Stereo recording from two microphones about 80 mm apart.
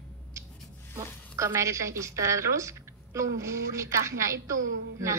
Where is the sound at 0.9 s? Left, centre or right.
Right.